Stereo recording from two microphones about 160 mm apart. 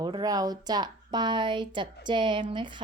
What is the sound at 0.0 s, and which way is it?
A woman's voice, 25° right (ahead or behind).